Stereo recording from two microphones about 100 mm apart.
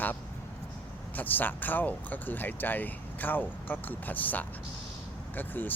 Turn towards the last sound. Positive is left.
turn(degrees=20)  # may be behind; listen again after turning